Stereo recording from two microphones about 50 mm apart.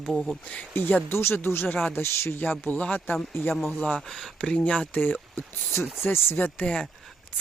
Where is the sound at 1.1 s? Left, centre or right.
Left.